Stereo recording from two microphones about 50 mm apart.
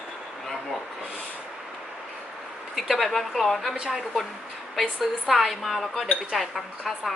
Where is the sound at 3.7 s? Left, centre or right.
Centre.